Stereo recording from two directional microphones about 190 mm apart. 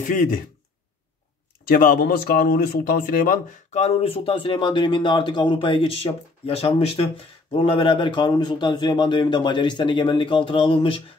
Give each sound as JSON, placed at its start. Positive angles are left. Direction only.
{"t": 0.0, "sound": "speech", "side_deg": 45}
{"t": 1.6, "sound": "a man's voice", "side_deg": 50}